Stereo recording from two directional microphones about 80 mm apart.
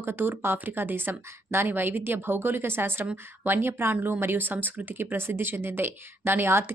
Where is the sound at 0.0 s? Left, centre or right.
Right.